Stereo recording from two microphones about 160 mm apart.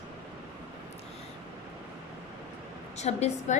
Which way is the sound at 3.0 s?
45° left (ahead or behind).